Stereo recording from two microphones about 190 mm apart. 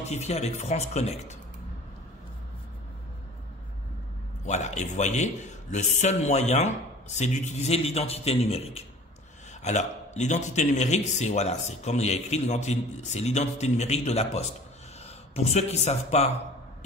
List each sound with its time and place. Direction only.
0.0 s speech: 35° left (ahead or behind)
4.5 s speech: 40° left (ahead or behind)